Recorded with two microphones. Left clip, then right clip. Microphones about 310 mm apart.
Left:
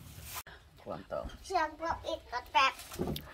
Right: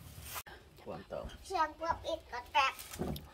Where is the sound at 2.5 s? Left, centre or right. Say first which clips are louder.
Left 3 dB; left.